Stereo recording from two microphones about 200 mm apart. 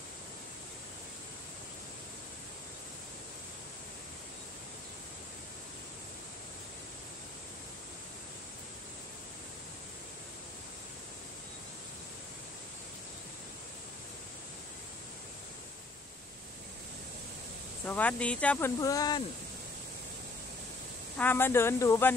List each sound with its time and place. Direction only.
17.8 s speech: 10° left (ahead or behind)
18.8 s speech: 15° left (ahead or behind)
21.2 s speech: 10° left (ahead or behind)